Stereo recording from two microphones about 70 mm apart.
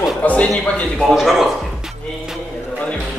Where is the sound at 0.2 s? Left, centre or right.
Centre.